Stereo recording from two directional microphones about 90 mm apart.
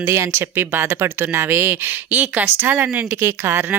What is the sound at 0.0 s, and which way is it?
A woman's voice, 30° right (ahead or behind).